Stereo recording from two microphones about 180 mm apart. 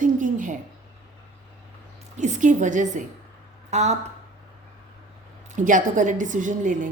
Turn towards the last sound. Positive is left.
turn(degrees=-45)  # may be behind; listen again after turning